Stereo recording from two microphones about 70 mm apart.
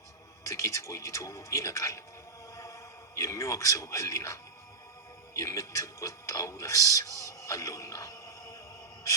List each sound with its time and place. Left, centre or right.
0.4 s a man's voice: left
5.4 s speech: left